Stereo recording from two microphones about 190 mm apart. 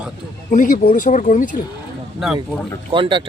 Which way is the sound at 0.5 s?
45° left (ahead or behind).